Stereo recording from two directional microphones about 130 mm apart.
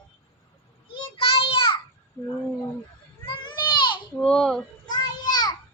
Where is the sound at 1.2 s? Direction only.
45° left (ahead or behind).